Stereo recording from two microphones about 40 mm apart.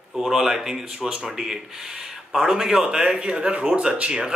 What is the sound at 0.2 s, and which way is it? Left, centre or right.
Speech, centre.